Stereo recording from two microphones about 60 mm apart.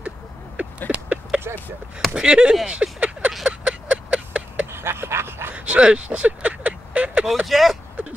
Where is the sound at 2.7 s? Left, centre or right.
Centre.